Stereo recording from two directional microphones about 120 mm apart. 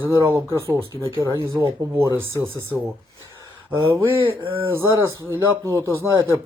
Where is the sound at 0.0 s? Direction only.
15° right (ahead or behind).